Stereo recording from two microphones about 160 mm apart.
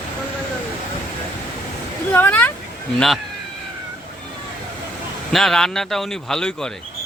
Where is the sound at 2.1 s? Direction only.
10° left (ahead or behind).